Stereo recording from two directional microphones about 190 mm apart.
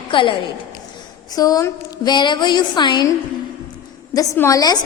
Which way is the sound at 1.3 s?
20° left (ahead or behind).